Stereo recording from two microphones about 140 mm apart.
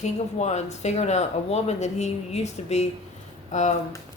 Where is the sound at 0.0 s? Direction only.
55° left (ahead or behind).